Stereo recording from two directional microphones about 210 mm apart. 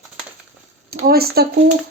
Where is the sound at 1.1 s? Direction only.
50° right (ahead or behind).